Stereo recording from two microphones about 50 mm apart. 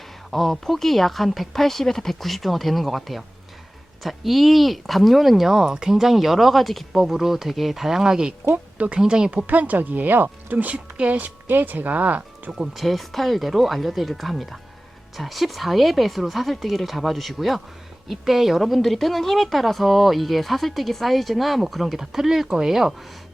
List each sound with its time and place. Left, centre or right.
0.3 s speech: centre
8.5 s speech: right
9.0 s speech: centre
9.5 s speech: right
11.4 s speech: right
12.7 s speech: centre